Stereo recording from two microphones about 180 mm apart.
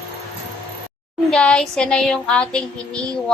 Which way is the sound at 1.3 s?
5° left (ahead or behind).